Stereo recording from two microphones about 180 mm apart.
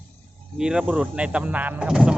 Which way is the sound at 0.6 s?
5° right (ahead or behind).